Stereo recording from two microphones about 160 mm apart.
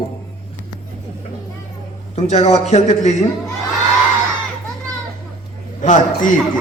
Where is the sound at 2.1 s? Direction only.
40° left (ahead or behind).